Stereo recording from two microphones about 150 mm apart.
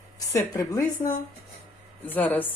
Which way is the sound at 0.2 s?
20° left (ahead or behind).